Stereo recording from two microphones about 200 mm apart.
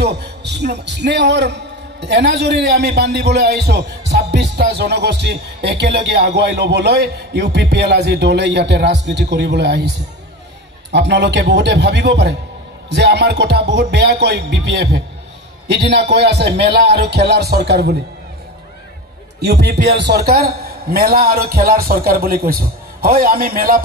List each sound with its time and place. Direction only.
0.0 s a man's voice: 55° right (ahead or behind)
19.4 s a man's voice: 55° right (ahead or behind)